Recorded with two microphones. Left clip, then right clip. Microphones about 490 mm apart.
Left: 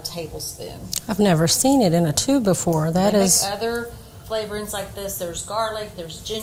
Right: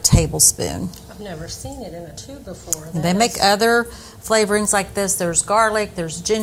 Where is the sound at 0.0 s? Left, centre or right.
Right.